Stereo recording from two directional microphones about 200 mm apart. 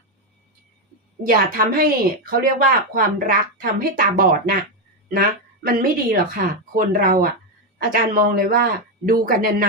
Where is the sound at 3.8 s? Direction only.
45° right (ahead or behind).